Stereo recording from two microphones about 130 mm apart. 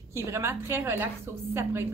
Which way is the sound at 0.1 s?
20° right (ahead or behind).